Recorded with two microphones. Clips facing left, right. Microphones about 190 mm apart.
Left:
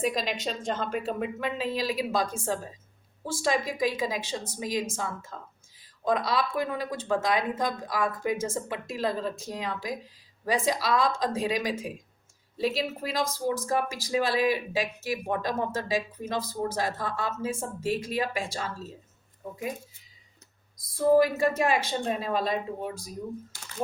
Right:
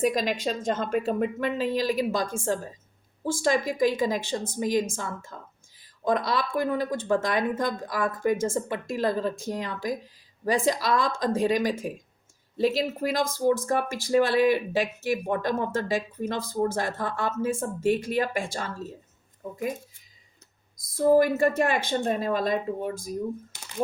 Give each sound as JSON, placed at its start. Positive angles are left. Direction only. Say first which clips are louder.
{"t": 0.0, "sound": "speech", "louder": "right 4 dB", "side_deg": -45}
{"t": 6.1, "sound": "speech", "louder": "right 1 dB", "side_deg": -50}
{"t": 20.7, "sound": "speech", "louder": "right 1 dB", "side_deg": -50}
{"t": 23.5, "sound": "a sound", "louder": "right 1 dB", "side_deg": -20}